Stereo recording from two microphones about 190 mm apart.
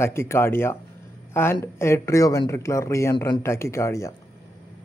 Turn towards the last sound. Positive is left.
turn(degrees=15)  # may be behind; listen again after turning